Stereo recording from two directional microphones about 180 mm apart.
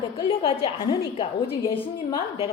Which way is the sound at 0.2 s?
30° left (ahead or behind).